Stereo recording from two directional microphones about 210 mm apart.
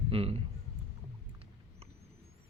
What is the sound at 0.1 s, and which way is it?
Speech, 30° right (ahead or behind).